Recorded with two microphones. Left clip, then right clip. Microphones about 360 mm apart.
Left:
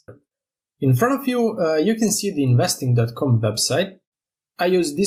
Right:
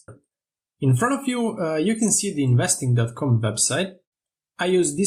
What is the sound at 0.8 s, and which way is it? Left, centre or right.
Speech, centre.